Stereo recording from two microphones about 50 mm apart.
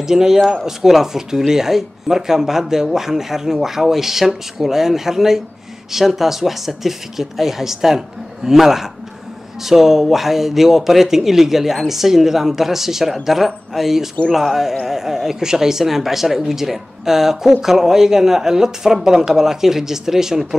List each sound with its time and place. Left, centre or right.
0.0 s a man's voice: centre